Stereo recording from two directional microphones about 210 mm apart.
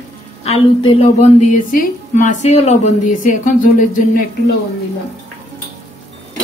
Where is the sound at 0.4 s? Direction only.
30° left (ahead or behind).